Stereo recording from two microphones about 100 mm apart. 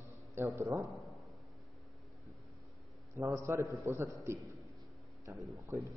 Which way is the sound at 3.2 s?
30° right (ahead or behind).